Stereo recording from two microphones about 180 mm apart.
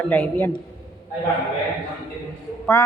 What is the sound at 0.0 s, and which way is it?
Speech, 10° left (ahead or behind).